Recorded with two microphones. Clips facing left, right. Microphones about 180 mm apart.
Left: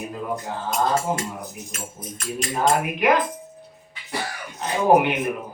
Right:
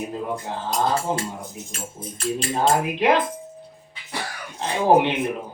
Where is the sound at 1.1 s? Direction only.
30° right (ahead or behind).